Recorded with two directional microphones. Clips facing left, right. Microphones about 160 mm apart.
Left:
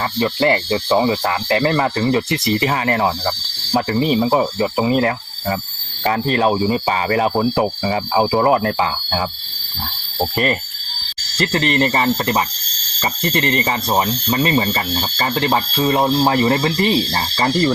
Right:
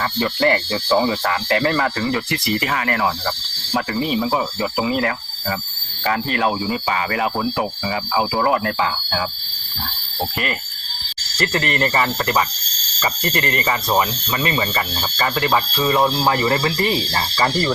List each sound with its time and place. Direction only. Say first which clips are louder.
0.2 s speech: left 2 dB; 25° left (ahead or behind)
11.3 s speech: left 3 dB; 25° left (ahead or behind)